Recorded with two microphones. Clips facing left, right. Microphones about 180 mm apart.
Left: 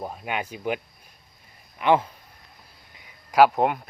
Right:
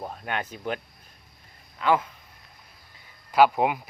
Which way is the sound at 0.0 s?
10° left (ahead or behind).